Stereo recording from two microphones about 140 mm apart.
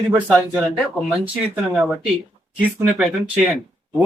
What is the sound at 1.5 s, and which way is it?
Speech, 10° right (ahead or behind).